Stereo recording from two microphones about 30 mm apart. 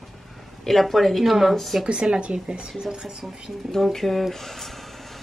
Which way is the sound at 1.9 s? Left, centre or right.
Right.